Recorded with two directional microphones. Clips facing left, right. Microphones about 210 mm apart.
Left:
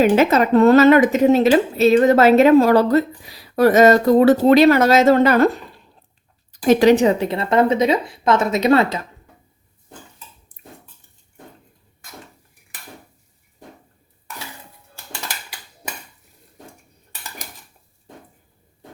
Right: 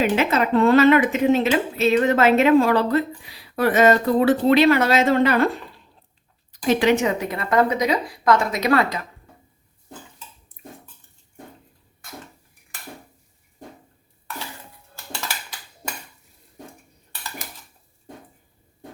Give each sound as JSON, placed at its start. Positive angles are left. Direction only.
{"t": 0.0, "sound": "a woman's voice", "side_deg": 40}
{"t": 6.5, "sound": "a woman's voice", "side_deg": 40}